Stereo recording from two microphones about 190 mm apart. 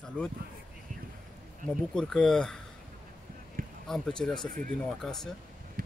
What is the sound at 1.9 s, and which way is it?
Speech, 5° left (ahead or behind).